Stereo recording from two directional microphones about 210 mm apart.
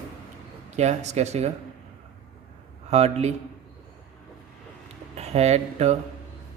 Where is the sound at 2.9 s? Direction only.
30° right (ahead or behind).